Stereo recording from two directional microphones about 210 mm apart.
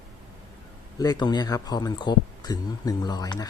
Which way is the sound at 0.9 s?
20° left (ahead or behind).